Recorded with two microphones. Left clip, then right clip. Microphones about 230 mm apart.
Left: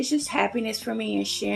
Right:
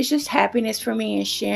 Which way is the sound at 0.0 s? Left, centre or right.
Right.